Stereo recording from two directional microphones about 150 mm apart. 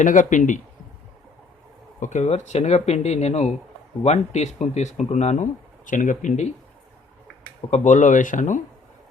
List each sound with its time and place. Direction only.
0.0 s speech: 55° left (ahead or behind)
2.0 s speech: 50° left (ahead or behind)
7.7 s speech: 55° left (ahead or behind)